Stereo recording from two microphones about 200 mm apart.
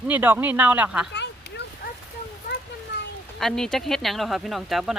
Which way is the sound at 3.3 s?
Centre (ahead or behind).